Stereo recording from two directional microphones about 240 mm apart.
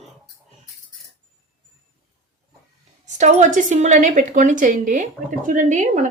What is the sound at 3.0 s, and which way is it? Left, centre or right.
A woman's voice, right.